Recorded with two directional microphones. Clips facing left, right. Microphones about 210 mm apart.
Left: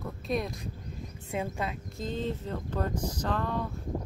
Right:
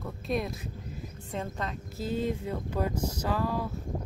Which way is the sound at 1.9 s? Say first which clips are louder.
Right 5 dB; 10° right (ahead or behind).